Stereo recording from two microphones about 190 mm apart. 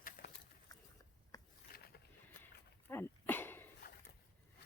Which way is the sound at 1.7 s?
50° left (ahead or behind).